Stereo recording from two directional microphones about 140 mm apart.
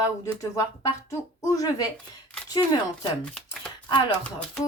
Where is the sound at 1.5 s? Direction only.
25° left (ahead or behind).